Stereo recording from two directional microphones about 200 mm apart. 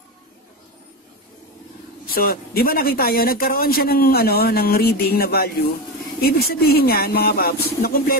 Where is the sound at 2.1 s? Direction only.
50° left (ahead or behind).